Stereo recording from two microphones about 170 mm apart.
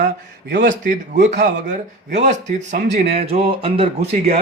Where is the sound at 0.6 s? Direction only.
50° right (ahead or behind).